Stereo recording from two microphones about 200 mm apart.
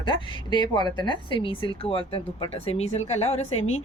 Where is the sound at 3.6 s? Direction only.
90° left.